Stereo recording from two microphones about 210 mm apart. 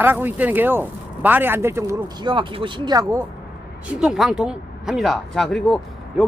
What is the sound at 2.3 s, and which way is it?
Speech, 25° right (ahead or behind).